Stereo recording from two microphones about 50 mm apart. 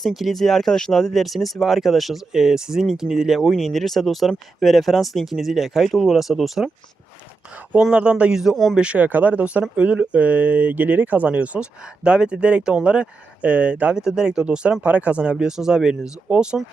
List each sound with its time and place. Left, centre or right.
0.0 s speech: centre
1.1 s speech: centre
2.3 s a man's voice: centre
3.5 s speech: centre
7.9 s a man's voice: right; by 8.7 s centre
8.7 s speech: right
9.0 s speech: right
13.9 s a man's voice: centre
14.8 s speech: right